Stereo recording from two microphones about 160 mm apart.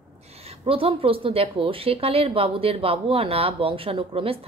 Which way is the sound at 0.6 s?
35° right (ahead or behind).